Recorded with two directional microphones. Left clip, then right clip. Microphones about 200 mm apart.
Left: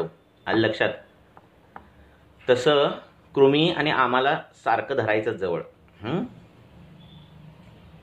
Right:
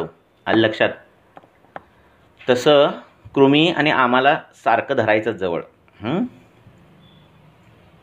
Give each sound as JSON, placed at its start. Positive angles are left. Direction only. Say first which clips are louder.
{"t": 0.4, "sound": "speech", "louder": "right 5 dB", "side_deg": -40}
{"t": 2.3, "sound": "speech", "louder": "right 5 dB", "side_deg": -40}